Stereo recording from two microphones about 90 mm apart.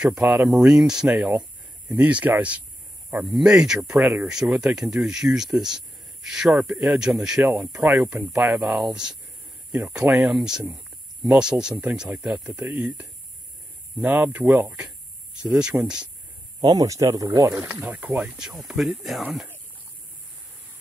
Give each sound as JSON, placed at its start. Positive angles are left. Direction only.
{"t": 0.0, "sound": "speech", "side_deg": -10}
{"t": 3.3, "sound": "speech", "side_deg": -5}
{"t": 8.8, "sound": "speech", "side_deg": -10}
{"t": 9.7, "sound": "speech", "side_deg": -20}
{"t": 10.3, "sound": "speech", "side_deg": -5}
{"t": 10.8, "sound": "a sound", "side_deg": -10}
{"t": 11.7, "sound": "speech", "side_deg": -15}
{"t": 16.6, "sound": "speech", "side_deg": -40}
{"t": 17.8, "sound": "speech", "side_deg": -15}
{"t": 18.3, "sound": "speech", "side_deg": -5}